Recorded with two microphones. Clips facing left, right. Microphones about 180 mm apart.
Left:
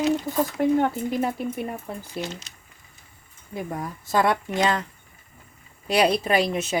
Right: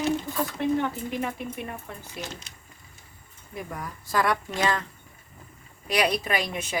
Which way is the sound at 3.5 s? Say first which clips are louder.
Left 5 dB; 25° left (ahead or behind).